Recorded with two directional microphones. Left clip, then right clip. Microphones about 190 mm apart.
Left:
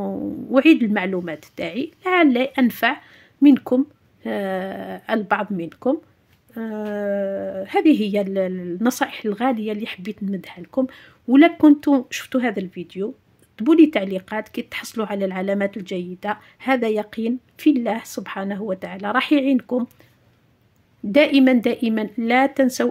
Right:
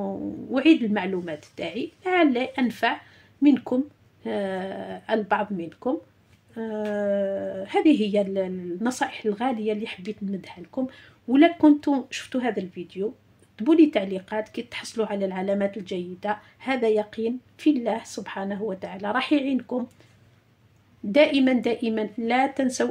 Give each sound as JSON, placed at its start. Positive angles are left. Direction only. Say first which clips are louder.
{"t": 0.0, "sound": "speech", "louder": "left 4 dB", "side_deg": 40}
{"t": 21.1, "sound": "speech", "louder": "left 4 dB", "side_deg": 40}